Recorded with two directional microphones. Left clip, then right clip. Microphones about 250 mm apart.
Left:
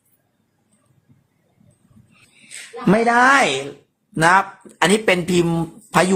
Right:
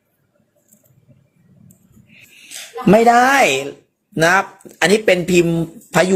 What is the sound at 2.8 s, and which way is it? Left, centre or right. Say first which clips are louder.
Speech: right 3 dB; centre.